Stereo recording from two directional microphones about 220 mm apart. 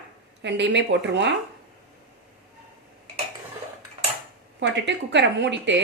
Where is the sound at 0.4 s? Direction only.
55° right (ahead or behind).